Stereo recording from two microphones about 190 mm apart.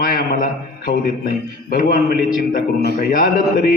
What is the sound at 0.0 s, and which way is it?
A man's voice, 50° left (ahead or behind).